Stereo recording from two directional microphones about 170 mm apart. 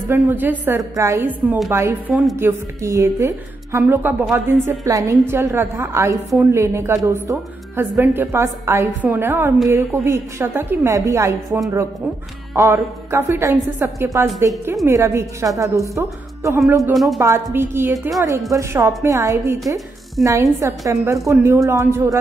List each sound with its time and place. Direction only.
0.1 s a woman's voice: 10° right (ahead or behind)
16.9 s speech: centre (ahead or behind)
17.2 s a woman's voice: 15° right (ahead or behind)
20.6 s a woman's voice: 15° right (ahead or behind)